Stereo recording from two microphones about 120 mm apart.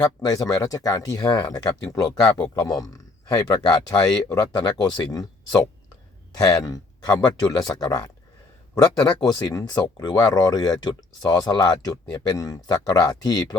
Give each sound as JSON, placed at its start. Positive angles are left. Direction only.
{"t": 0.3, "sound": "speech", "side_deg": 30}